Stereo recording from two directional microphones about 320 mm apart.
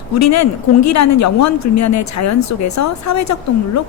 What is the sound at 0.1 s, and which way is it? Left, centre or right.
Speech, left.